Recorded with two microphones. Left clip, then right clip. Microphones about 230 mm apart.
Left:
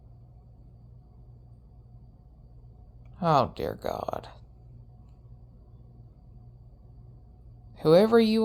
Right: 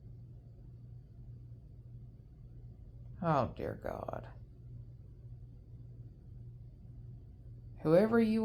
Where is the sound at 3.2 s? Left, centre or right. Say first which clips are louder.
Left 9 dB; left.